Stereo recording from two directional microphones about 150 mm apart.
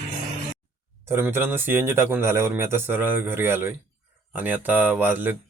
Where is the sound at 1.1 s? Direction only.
15° right (ahead or behind).